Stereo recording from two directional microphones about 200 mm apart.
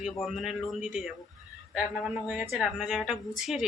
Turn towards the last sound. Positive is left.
turn(degrees=0)  # may be behind; listen again after turning